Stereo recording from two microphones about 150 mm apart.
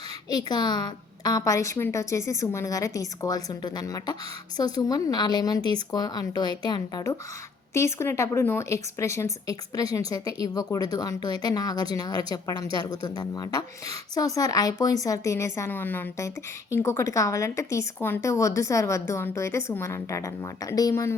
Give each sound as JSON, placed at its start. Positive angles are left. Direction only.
{"t": 0.3, "sound": "a woman's voice", "side_deg": 30}